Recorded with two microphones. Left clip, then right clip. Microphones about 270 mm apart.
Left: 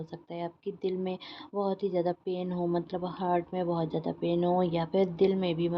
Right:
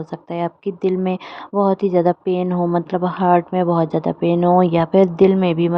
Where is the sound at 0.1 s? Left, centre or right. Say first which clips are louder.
Right 16 dB; right.